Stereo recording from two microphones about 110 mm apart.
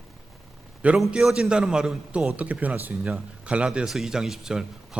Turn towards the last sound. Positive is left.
turn(degrees=-5)  # may be behind; listen again after turning